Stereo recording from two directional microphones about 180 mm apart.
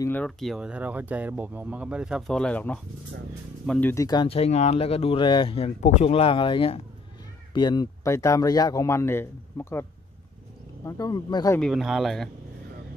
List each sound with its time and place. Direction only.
0.0 s speech: 10° left (ahead or behind)
3.9 s speech: 20° left (ahead or behind)
10.9 s speech: 20° left (ahead or behind)
11.6 s speech: centre (ahead or behind)